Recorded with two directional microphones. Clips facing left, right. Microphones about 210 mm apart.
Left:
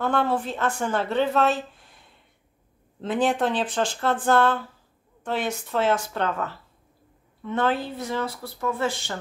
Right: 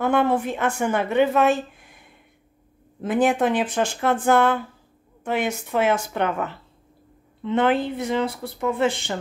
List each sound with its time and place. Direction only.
0.0 s a woman's voice: 15° right (ahead or behind)